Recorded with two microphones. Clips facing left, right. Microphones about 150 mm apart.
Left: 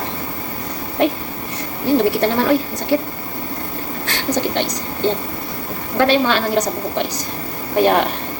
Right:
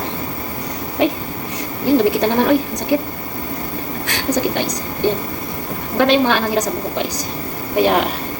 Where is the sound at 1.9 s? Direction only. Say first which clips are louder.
Right 1 dB; 15° right (ahead or behind).